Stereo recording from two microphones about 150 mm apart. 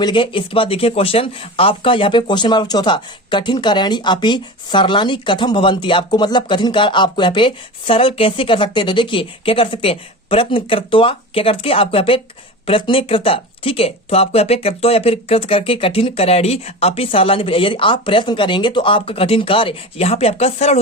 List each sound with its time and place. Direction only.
0.0 s speech: 30° left (ahead or behind)